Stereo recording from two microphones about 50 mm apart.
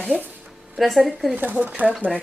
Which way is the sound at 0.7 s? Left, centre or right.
Centre.